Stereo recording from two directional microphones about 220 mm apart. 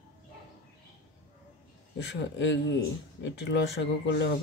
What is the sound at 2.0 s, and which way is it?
Speech, 55° left (ahead or behind).